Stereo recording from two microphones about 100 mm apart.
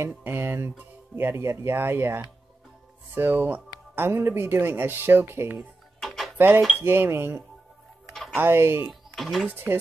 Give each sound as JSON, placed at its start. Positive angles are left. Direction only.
{"t": 0.2, "sound": "speech", "side_deg": -20}
{"t": 5.9, "sound": "music", "side_deg": 0}
{"t": 6.3, "sound": "cutlery", "side_deg": -20}
{"t": 6.8, "sound": "speech", "side_deg": -25}
{"t": 8.1, "sound": "music", "side_deg": 0}
{"t": 8.4, "sound": "speech", "side_deg": -25}
{"t": 9.1, "sound": "speech", "side_deg": 5}
{"t": 9.5, "sound": "speech", "side_deg": -20}